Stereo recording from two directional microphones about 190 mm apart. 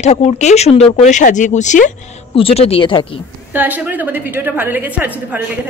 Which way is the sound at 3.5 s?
10° right (ahead or behind).